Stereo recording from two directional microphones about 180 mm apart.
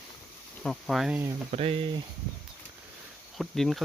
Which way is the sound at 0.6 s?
Centre (ahead or behind).